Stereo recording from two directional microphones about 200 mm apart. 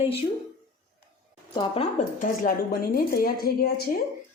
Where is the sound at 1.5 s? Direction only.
25° left (ahead or behind); by 4.0 s 50° left (ahead or behind).